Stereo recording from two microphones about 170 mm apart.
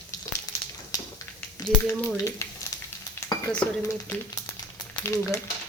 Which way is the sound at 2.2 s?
20° left (ahead or behind).